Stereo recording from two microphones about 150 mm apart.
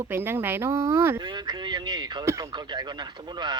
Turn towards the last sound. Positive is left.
turn(degrees=-30)  # may be behind; listen again after turning